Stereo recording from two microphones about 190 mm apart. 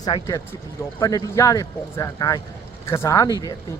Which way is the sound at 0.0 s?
20° left (ahead or behind).